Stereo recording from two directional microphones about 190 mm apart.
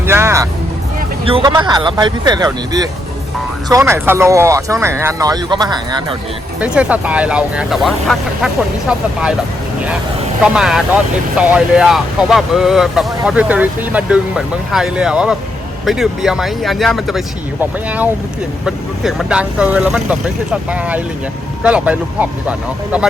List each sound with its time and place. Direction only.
0.0 s music: 15° right (ahead or behind)
1.2 s speech: 25° right (ahead or behind)
6.6 s speech: 5° right (ahead or behind)
10.4 s speech: 5° right (ahead or behind)